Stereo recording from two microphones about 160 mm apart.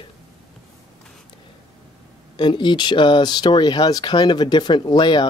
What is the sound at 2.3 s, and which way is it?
Speech, 30° left (ahead or behind).